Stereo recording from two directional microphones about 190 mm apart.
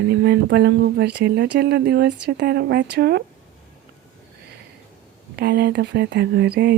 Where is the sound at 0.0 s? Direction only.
60° right (ahead or behind).